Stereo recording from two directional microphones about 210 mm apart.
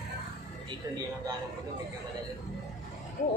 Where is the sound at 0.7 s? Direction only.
20° right (ahead or behind).